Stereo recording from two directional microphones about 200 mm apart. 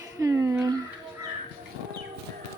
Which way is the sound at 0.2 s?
15° right (ahead or behind).